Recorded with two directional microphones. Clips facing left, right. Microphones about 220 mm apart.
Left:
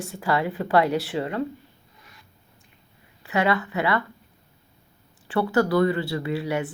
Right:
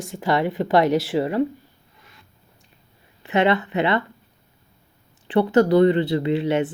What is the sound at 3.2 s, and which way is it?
Speech, 20° right (ahead or behind).